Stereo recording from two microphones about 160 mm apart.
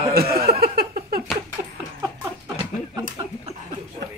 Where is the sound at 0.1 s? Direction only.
75° right (ahead or behind).